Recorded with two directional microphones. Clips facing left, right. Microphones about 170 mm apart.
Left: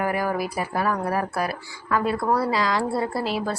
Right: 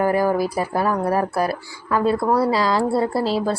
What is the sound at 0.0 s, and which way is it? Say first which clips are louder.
Speech: right 6 dB; 30° right (ahead or behind).